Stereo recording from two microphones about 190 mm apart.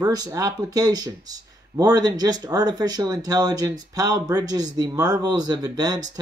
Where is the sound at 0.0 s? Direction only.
20° right (ahead or behind).